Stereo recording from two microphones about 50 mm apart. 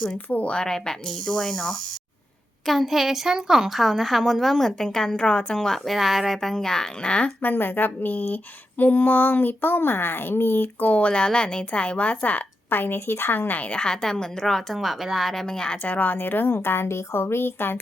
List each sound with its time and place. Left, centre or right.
0.3 s speech: left
0.5 s speech: centre
2.6 s a woman's voice: centre; by 5.5 s left
5.5 s a woman's voice: centre
7.4 s speech: left
13.6 s a woman's voice: left
13.8 s speech: centre
14.4 s a woman's voice: centre
15.8 s a woman's voice: left
17.1 s speech: left